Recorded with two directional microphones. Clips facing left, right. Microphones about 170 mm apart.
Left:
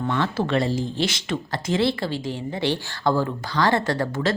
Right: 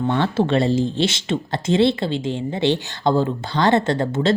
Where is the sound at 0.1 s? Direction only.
30° right (ahead or behind).